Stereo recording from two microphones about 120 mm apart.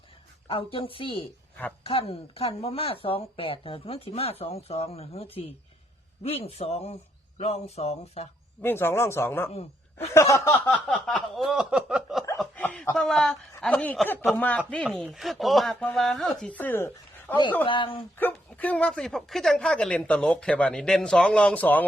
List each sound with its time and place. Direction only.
0.4 s speech: 45° left (ahead or behind)
8.6 s speech: 20° left (ahead or behind)
9.5 s speech: 60° left (ahead or behind)
10.2 s speech: 25° left (ahead or behind)
10.8 s a sound: 5° left (ahead or behind)
13.0 s speech: 5° left (ahead or behind)
14.9 s speech: centre (ahead or behind); by 17.3 s 20° left (ahead or behind)
17.7 s speech: 45° left (ahead or behind)
18.2 s speech: 15° left (ahead or behind)